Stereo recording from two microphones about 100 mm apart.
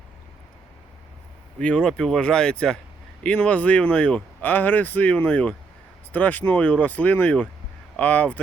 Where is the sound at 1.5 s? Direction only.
10° left (ahead or behind).